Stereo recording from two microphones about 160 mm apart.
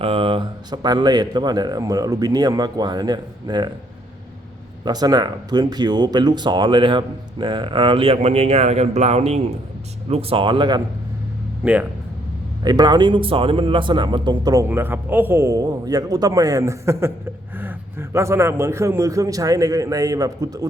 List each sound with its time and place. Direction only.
0.0 s speech: 35° right (ahead or behind)
4.9 s speech: 25° right (ahead or behind)
11.6 s speech: 10° right (ahead or behind)
12.6 s speech: 25° right (ahead or behind)